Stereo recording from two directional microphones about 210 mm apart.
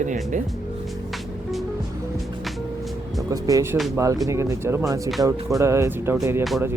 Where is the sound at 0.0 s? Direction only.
35° right (ahead or behind).